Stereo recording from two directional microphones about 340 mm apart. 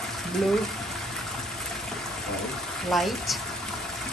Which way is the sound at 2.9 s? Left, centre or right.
Centre.